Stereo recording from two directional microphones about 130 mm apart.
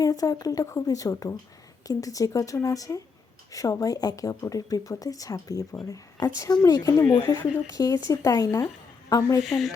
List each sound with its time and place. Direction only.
0.0 s speech: 25° left (ahead or behind)
9.4 s speech: centre (ahead or behind)